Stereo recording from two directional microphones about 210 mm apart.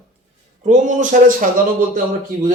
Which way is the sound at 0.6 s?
35° right (ahead or behind).